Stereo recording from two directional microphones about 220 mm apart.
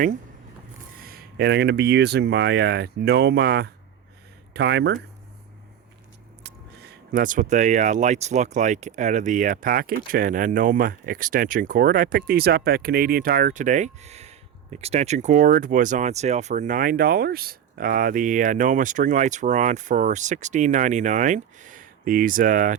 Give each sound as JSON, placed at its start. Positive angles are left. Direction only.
{"t": 1.0, "sound": "speech", "side_deg": -45}
{"t": 6.4, "sound": "speech", "side_deg": -45}